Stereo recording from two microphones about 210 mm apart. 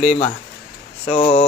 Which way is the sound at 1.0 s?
30° left (ahead or behind).